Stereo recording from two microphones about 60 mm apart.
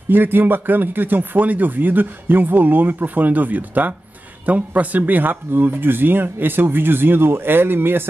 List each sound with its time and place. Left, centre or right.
0.1 s speech: right